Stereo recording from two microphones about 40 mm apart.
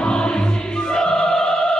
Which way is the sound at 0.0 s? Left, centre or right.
Left.